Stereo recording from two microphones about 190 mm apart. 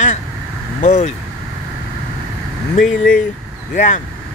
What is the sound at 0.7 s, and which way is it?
Speech, 40° left (ahead or behind).